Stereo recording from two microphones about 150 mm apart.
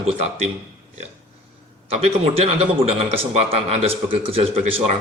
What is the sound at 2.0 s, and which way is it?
Speech, 40° right (ahead or behind).